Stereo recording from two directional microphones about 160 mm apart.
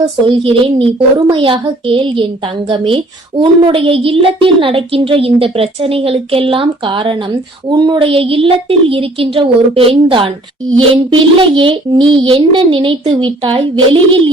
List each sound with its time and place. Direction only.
0.0 s a woman's voice: 35° right (ahead or behind)